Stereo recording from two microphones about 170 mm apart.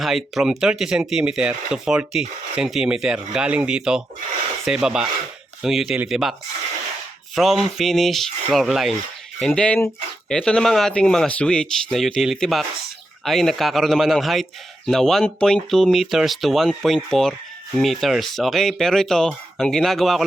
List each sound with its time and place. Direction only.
0.0 s speech: centre (ahead or behind)
7.3 s speech: centre (ahead or behind)